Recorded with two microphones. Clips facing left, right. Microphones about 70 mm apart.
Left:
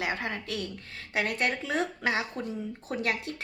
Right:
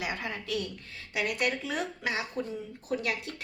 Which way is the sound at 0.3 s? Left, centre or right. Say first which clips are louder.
Even; left.